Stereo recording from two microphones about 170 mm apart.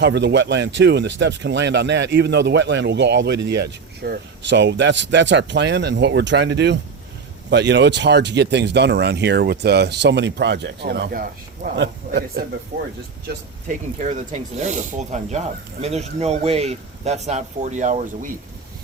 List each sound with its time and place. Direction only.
0.0 s speech: 90° right; by 12.2 s 65° right (ahead or behind)
13.2 s speech: 50° right (ahead or behind)